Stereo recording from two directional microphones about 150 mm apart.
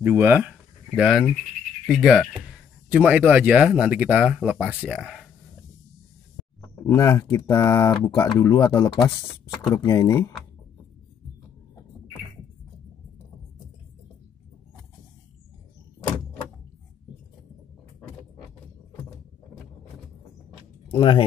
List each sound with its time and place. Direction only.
0.0 s speech: 15° right (ahead or behind)
6.7 s speech: 20° left (ahead or behind)
20.9 s speech: 30° left (ahead or behind)